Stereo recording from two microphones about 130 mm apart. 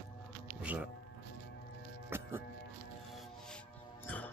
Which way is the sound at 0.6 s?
10° right (ahead or behind).